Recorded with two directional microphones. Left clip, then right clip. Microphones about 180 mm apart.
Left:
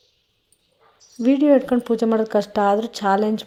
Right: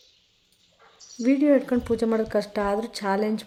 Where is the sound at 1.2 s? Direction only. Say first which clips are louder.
Left 4 dB; 20° left (ahead or behind).